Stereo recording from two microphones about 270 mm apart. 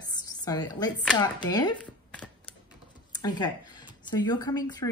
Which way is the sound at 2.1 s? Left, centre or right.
Centre.